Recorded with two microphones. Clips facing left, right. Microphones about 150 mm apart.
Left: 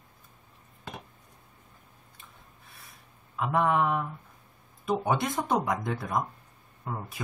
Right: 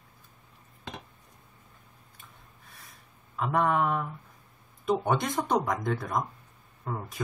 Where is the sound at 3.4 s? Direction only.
5° left (ahead or behind).